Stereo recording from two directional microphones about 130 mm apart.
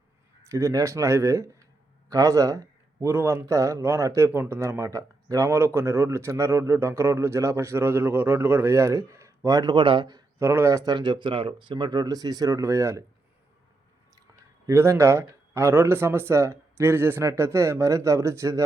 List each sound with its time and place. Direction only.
0.4 s a man's voice: 25° right (ahead or behind)
10.3 s a man's voice: 20° right (ahead or behind)
14.7 s a man's voice: 20° right (ahead or behind)